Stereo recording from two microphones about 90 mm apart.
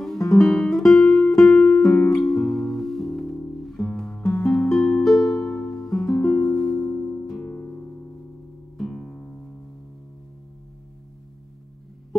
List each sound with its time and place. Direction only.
0.0 s guitar: 5° left (ahead or behind)
2.1 s music: centre (ahead or behind)
4.2 s music: 35° left (ahead or behind)
4.5 s music: 5° left (ahead or behind)
7.2 s music: 5° left (ahead or behind)
7.5 s music: 15° left (ahead or behind)
8.7 s music: centre (ahead or behind)